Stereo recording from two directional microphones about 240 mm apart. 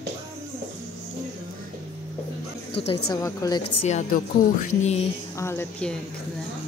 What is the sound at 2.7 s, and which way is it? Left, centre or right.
Speech, left.